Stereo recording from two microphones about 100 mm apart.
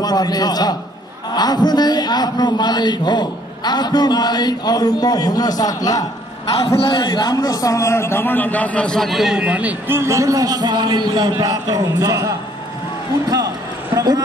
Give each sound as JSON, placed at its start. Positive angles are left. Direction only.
{"t": 0.0, "sound": "a man's voice", "side_deg": 40}
{"t": 6.8, "sound": "a man's voice", "side_deg": 50}
{"t": 11.3, "sound": "a man's voice", "side_deg": -35}
{"t": 13.9, "sound": "a man's voice", "side_deg": -40}